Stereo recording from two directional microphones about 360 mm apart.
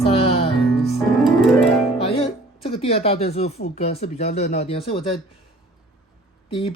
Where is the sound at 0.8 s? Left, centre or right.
Centre.